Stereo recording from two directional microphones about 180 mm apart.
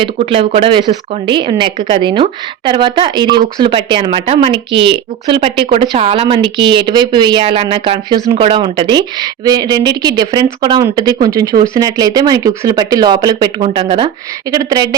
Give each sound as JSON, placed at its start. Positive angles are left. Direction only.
{"t": 0.2, "sound": "speech", "side_deg": -30}
{"t": 14.5, "sound": "speech", "side_deg": -20}